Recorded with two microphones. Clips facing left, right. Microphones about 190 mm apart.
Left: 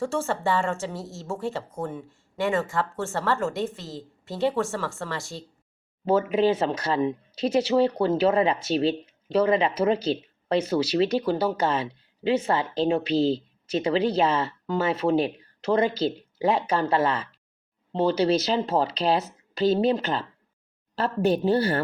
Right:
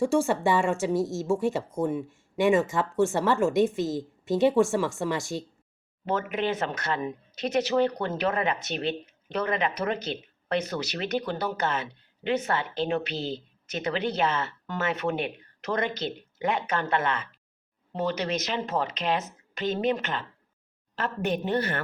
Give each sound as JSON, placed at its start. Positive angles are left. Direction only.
{"t": 0.0, "sound": "a woman's voice", "side_deg": -15}
{"t": 6.1, "sound": "speech", "side_deg": 30}